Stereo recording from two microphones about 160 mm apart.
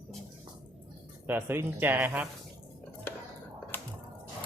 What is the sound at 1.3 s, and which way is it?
Speech, 15° right (ahead or behind).